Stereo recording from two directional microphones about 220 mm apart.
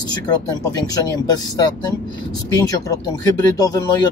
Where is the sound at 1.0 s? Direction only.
15° left (ahead or behind).